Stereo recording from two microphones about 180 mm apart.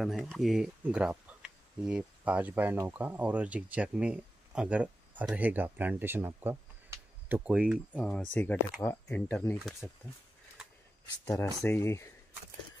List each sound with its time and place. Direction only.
0.0 s speech: centre (ahead or behind)
9.8 s speech: 5° right (ahead or behind)
11.2 s speech: 15° left (ahead or behind)